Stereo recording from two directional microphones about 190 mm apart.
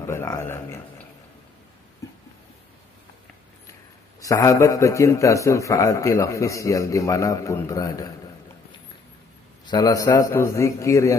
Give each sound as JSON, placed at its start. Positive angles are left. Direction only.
{"t": 0.0, "sound": "a man's voice", "side_deg": 15}
{"t": 4.2, "sound": "a man's voice", "side_deg": 15}
{"t": 9.7, "sound": "a man's voice", "side_deg": 20}